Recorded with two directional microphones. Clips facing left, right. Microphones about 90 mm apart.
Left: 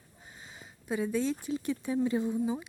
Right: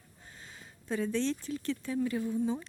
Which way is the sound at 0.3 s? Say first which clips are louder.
Left 1 dB; 15° left (ahead or behind).